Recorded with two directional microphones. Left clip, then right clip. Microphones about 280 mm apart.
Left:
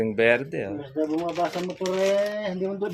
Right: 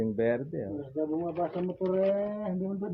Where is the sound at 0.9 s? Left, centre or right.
Centre.